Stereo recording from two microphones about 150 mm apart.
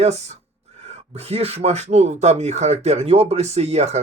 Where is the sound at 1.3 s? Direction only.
45° right (ahead or behind).